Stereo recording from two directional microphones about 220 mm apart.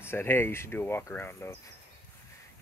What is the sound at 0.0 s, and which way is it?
Speech, 10° left (ahead or behind).